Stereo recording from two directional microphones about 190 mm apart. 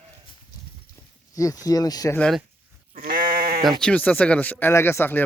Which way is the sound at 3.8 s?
10° left (ahead or behind).